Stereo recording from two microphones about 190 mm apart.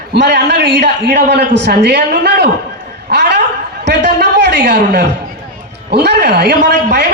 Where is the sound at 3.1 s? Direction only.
65° right (ahead or behind).